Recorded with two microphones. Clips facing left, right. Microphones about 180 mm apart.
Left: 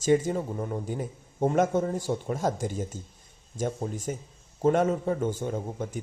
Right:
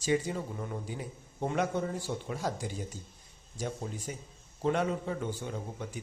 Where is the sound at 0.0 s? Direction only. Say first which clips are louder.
Left 7 dB; 45° left (ahead or behind).